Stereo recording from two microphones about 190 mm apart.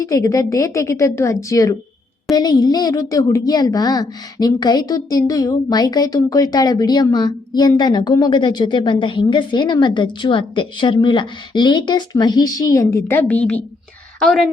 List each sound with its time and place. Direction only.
0.0 s a woman's voice: 15° left (ahead or behind); by 14.4 s centre (ahead or behind)